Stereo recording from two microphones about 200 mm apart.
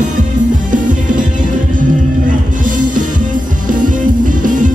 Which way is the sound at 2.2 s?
40° right (ahead or behind).